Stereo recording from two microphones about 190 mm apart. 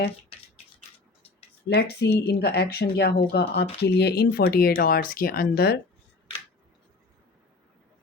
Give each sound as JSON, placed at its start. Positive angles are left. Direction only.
{"t": 1.7, "sound": "speech", "side_deg": 60}